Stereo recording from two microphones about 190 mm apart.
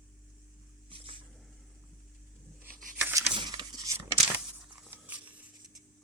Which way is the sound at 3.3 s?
25° right (ahead or behind).